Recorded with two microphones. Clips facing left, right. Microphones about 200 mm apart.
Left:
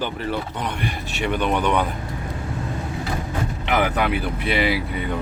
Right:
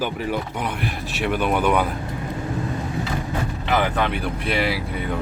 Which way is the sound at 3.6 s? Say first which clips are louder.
Even; 15° left (ahead or behind).